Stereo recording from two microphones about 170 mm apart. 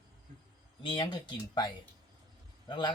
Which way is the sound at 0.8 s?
30° left (ahead or behind).